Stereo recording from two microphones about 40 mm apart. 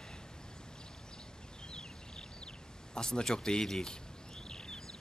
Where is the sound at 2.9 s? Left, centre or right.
Centre.